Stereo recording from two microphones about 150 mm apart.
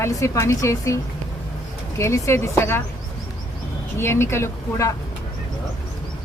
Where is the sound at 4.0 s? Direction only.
15° left (ahead or behind).